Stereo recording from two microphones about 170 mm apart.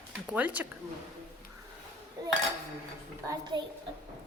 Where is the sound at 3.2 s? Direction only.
25° right (ahead or behind).